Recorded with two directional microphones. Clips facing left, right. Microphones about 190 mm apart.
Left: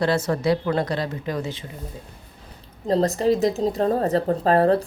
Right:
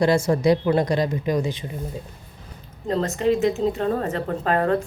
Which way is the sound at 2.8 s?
35° left (ahead or behind).